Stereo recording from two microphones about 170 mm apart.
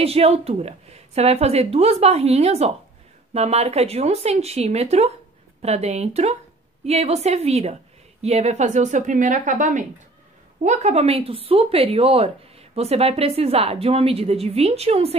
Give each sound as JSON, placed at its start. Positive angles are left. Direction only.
{"t": 0.0, "sound": "a woman's voice", "side_deg": -35}